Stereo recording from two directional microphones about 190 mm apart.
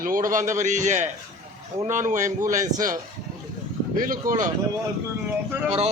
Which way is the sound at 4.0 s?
45° right (ahead or behind).